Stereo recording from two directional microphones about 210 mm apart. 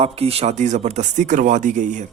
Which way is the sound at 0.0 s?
30° right (ahead or behind).